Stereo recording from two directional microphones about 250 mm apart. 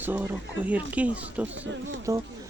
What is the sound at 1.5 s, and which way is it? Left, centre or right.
Speech, right.